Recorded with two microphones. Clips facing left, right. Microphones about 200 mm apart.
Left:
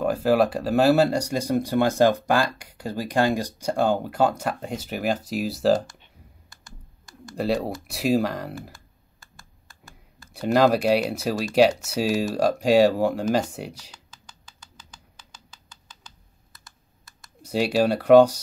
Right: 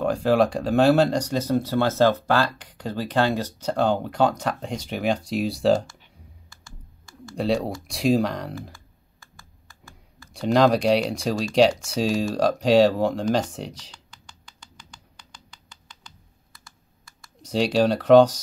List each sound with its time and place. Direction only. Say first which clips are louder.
0.0 s speech: even; 5° left (ahead or behind)
6.5 s a sound: left 1 dB; 20° left (ahead or behind)
7.3 s speech: right 1 dB; 5° left (ahead or behind)
10.3 s speech: even; 5° left (ahead or behind)
17.4 s speech: right 1 dB; 5° left (ahead or behind)